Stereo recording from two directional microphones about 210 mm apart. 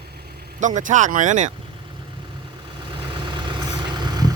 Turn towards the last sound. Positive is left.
turn(degrees=-20)  # may be behind; listen again after turning